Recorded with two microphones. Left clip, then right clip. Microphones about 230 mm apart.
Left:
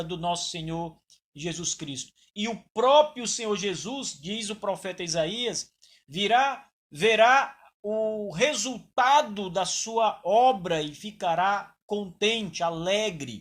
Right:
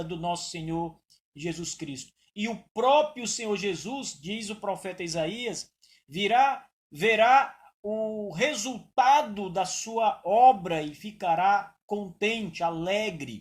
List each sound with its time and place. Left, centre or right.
0.0 s speech: left